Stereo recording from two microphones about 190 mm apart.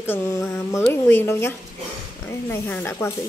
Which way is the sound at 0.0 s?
15° left (ahead or behind).